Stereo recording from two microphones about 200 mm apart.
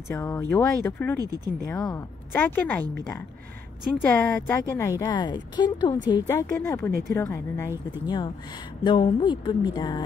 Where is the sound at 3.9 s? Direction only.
10° left (ahead or behind).